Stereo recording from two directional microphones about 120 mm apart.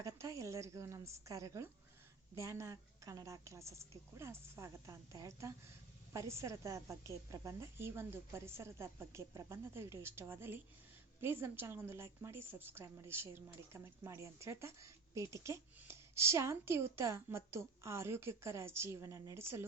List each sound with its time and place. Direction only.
0.0 s a woman's voice: 25° right (ahead or behind)